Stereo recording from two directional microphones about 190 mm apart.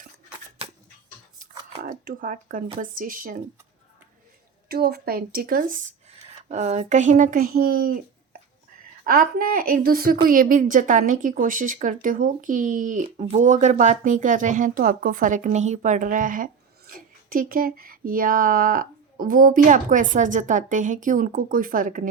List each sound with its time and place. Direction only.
1.8 s a woman's voice: 45° right (ahead or behind)
4.7 s a woman's voice: 55° right (ahead or behind)
6.1 s a woman's voice: 35° right (ahead or behind)